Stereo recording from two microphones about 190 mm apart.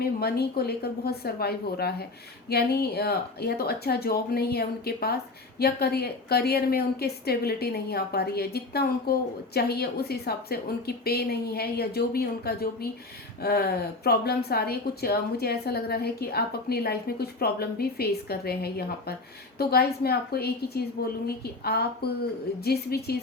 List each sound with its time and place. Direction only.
0.0 s speech: 55° left (ahead or behind)